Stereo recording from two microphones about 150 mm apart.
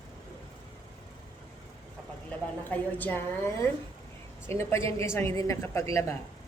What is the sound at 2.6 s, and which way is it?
A woman's voice, 10° left (ahead or behind).